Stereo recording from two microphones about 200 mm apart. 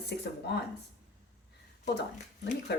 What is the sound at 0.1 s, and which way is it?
Speech, 55° left (ahead or behind).